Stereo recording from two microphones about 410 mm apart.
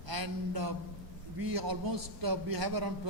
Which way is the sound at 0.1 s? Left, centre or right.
Right.